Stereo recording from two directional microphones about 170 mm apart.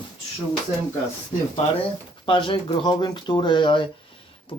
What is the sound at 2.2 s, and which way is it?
Speech, 30° left (ahead or behind).